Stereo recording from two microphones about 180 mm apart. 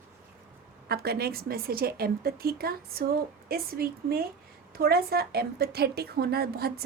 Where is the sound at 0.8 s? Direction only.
60° right (ahead or behind).